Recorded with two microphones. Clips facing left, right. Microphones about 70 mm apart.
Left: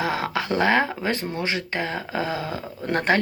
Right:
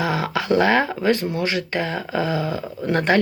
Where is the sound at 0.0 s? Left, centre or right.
Left.